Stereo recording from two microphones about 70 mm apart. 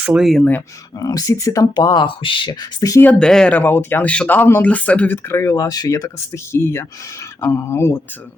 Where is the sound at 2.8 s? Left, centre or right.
Left.